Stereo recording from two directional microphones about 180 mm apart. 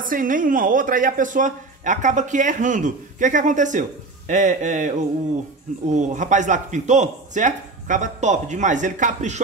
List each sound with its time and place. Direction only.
0.0 s speech: 50° right (ahead or behind)